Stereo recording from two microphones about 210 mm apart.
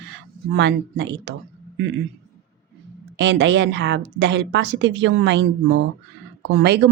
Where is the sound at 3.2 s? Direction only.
55° right (ahead or behind).